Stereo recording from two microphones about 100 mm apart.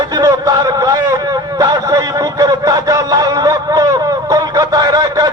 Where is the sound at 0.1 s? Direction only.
40° right (ahead or behind).